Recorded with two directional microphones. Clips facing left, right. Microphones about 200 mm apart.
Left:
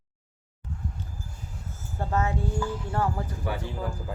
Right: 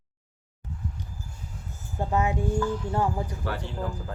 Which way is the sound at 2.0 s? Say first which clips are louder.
Right 2 dB; 15° right (ahead or behind).